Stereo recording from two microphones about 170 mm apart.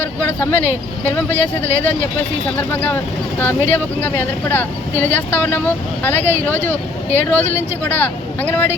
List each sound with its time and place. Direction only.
0.3 s speech: 10° left (ahead or behind)